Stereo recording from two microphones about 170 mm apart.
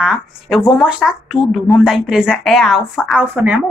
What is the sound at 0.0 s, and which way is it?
A woman's voice, centre (ahead or behind).